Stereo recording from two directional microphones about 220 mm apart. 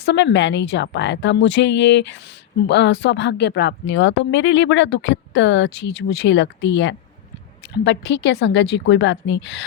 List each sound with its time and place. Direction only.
0.0 s a woman's voice: 55° left (ahead or behind)